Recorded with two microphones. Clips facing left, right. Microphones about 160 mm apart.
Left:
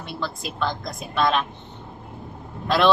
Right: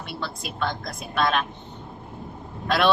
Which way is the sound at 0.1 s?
Centre (ahead or behind).